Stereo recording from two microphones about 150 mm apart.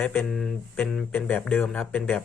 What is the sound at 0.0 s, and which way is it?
Speech, 10° left (ahead or behind).